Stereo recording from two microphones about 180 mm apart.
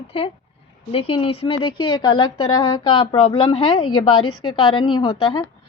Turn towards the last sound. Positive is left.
turn(degrees=25)  # may be behind; listen again after turning